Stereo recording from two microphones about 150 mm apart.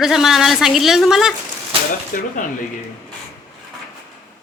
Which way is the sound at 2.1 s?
60° left (ahead or behind).